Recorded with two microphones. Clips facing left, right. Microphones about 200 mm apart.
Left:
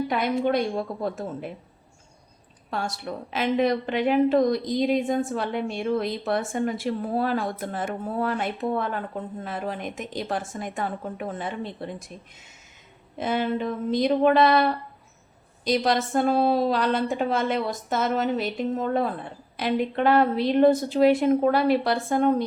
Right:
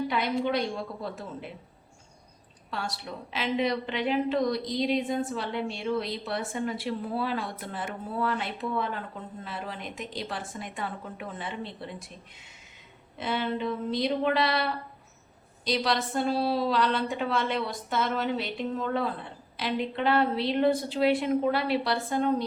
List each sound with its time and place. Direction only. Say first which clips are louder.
0.1 s a woman's voice: left 4 dB; 50° left (ahead or behind)
2.6 s a woman's voice: left 5 dB; 50° left (ahead or behind)
13.1 s a woman's voice: left 5 dB; 45° left (ahead or behind)